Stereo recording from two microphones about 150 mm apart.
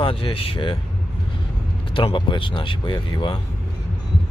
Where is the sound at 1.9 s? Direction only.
35° left (ahead or behind).